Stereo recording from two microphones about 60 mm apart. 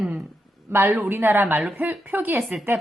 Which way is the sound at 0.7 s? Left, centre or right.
Right.